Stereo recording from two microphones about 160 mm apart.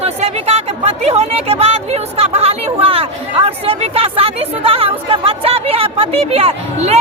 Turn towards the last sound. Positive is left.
turn(degrees=-40)  # may be behind; listen again after turning